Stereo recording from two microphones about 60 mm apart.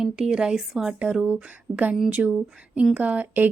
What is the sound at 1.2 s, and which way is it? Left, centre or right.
A woman's voice, right.